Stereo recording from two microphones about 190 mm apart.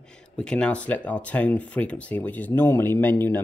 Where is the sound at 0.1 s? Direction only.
5° left (ahead or behind).